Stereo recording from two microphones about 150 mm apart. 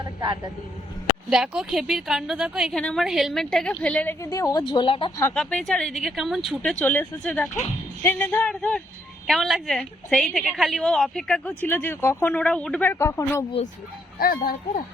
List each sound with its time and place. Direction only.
0.0 s vehicle: 25° right (ahead or behind)
1.3 s a woman's voice: 5° right (ahead or behind)
4.2 s speech: 20° left (ahead or behind)
5.3 s a woman's voice: 5° left (ahead or behind)
14.2 s speech: 75° left (ahead or behind)